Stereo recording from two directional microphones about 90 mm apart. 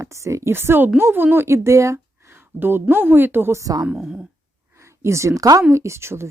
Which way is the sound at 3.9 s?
10° right (ahead or behind).